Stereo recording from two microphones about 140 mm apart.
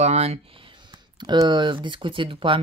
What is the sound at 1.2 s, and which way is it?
Speech, 30° right (ahead or behind).